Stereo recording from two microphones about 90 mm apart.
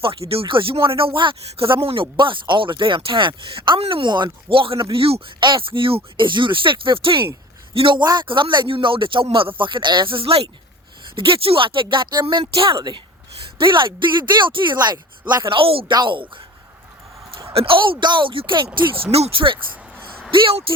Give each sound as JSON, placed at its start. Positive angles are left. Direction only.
{"t": 0.0, "sound": "speech", "side_deg": -90}
{"t": 8.0, "sound": "speech", "side_deg": -55}
{"t": 11.1, "sound": "speech", "side_deg": -75}
{"t": 13.6, "sound": "speech", "side_deg": -65}
{"t": 15.4, "sound": "speech", "side_deg": -85}
{"t": 16.0, "sound": "speech", "side_deg": -65}
{"t": 17.5, "sound": "speech", "side_deg": -85}
{"t": 18.0, "sound": "speech", "side_deg": -60}
{"t": 20.3, "sound": "speech", "side_deg": -80}